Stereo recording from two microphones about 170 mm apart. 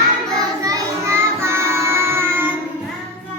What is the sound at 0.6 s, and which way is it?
Child singing, 20° right (ahead or behind).